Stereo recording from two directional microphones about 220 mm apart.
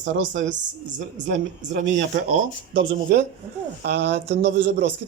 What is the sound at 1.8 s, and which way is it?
A man's voice, 55° right (ahead or behind).